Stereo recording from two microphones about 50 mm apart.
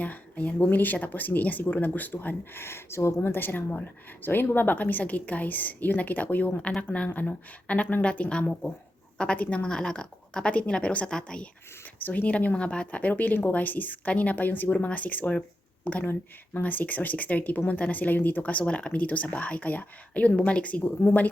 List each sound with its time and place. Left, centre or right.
0.0 s speech: left
3.2 s a woman's voice: left
6.6 s speech: left
11.9 s speech: left